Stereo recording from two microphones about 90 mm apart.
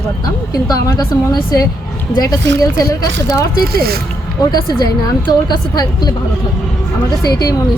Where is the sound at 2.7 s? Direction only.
35° left (ahead or behind).